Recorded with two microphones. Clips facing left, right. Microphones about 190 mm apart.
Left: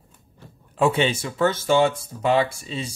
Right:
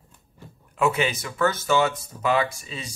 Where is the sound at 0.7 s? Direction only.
30° left (ahead or behind).